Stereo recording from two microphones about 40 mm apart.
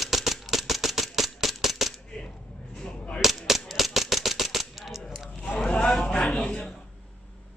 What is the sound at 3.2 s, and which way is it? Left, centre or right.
Cap gun, centre.